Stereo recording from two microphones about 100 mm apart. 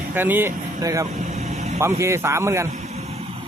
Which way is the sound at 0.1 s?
20° right (ahead or behind).